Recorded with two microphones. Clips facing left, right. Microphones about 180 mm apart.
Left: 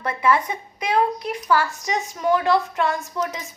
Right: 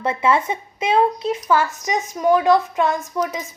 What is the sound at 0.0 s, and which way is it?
A child's voice, 25° right (ahead or behind).